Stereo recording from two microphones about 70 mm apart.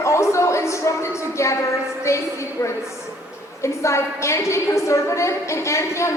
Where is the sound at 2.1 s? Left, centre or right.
Left.